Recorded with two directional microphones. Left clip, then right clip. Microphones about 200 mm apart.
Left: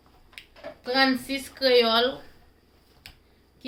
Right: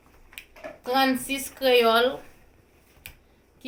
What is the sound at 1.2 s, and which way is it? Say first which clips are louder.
Speech: even; 20° left (ahead or behind).